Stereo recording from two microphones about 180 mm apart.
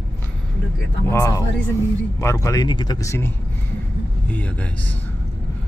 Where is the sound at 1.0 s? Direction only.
15° left (ahead or behind).